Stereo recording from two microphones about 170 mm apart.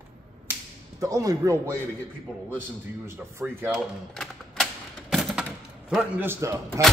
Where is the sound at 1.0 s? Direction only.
20° right (ahead or behind).